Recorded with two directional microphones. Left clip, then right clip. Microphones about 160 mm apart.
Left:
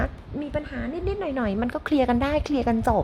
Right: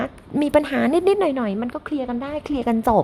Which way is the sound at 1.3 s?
10° right (ahead or behind).